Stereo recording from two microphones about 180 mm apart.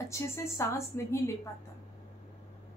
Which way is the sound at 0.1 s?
15° left (ahead or behind).